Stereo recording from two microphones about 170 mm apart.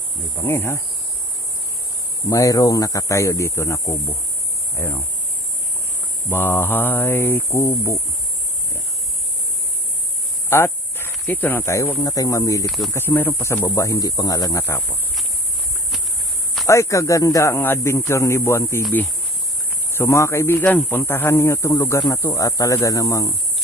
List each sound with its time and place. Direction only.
0.3 s speech: 15° left (ahead or behind)
2.3 s speech: 20° left (ahead or behind)
6.3 s speech: 15° left (ahead or behind)
10.5 s speech: 15° left (ahead or behind)
12.6 s speech: centre (ahead or behind)
12.9 s speech: 10° left (ahead or behind)
16.6 s speech: 15° left (ahead or behind)